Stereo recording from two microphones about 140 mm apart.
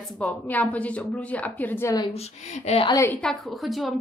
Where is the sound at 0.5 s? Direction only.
10° left (ahead or behind).